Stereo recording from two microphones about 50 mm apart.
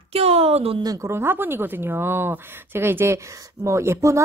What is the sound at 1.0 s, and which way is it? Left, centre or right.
A woman's voice, right.